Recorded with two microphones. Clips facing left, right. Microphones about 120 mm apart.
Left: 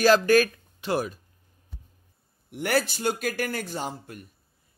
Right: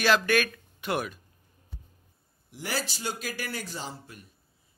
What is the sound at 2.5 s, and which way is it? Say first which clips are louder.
Speech: left 8 dB; 60° left (ahead or behind).